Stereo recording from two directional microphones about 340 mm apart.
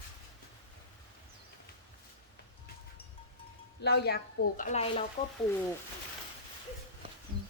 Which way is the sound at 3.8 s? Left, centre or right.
Left.